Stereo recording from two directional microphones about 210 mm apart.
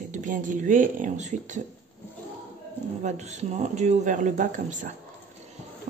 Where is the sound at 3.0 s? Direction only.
35° right (ahead or behind).